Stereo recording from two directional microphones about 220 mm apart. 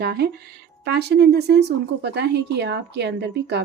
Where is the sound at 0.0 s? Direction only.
45° right (ahead or behind).